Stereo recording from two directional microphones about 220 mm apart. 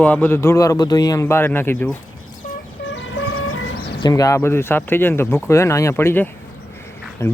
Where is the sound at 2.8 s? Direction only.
55° left (ahead or behind).